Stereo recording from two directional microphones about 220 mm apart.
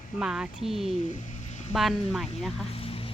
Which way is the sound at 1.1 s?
35° left (ahead or behind).